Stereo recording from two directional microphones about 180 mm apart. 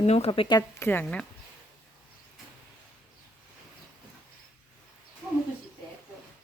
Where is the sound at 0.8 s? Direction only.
10° left (ahead or behind).